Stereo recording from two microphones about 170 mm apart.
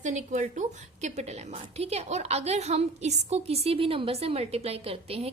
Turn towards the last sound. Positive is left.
turn(degrees=-35)  # may be behind; listen again after turning